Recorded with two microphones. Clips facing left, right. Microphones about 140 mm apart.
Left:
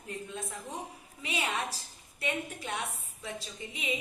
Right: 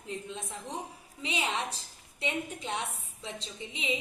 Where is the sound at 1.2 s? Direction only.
20° right (ahead or behind).